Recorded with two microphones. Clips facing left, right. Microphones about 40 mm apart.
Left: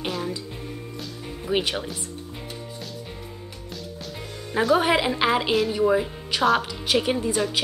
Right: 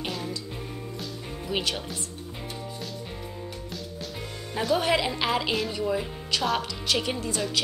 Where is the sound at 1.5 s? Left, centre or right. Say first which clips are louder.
Left 5 dB; centre.